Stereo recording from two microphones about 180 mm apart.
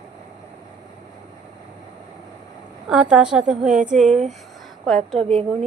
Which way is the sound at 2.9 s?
5° right (ahead or behind).